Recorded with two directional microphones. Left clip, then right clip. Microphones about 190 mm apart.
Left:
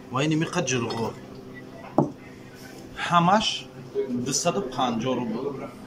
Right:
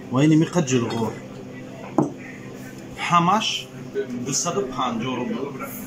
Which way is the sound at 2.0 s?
10° left (ahead or behind).